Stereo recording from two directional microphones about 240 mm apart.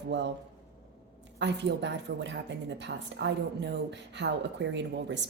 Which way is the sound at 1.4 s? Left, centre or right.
Right.